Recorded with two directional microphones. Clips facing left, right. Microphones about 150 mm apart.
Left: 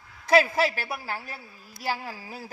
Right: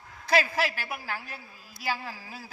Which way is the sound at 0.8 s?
40° left (ahead or behind).